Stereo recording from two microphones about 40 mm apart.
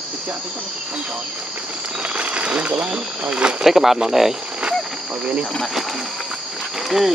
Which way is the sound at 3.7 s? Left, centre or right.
Centre.